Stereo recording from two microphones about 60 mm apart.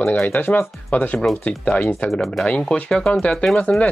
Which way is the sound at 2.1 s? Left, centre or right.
Centre.